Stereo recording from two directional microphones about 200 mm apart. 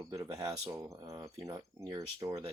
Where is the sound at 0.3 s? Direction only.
15° right (ahead or behind).